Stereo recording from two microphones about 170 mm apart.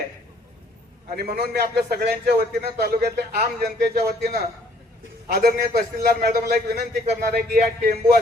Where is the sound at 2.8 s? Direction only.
70° right (ahead or behind).